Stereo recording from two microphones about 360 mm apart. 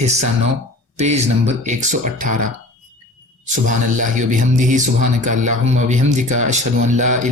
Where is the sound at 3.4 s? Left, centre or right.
Right.